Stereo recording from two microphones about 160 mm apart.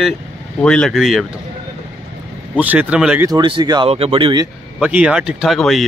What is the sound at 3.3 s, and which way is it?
A man's voice, 30° right (ahead or behind).